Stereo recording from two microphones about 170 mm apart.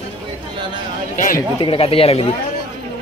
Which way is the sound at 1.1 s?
50° left (ahead or behind).